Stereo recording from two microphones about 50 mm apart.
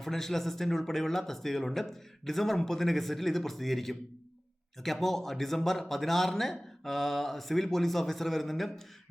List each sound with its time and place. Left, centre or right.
0.0 s speech: centre